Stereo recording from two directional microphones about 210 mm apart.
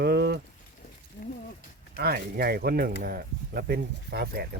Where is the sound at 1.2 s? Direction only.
40° left (ahead or behind).